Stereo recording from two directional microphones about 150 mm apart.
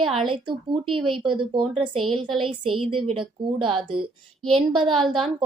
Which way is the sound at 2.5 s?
35° right (ahead or behind).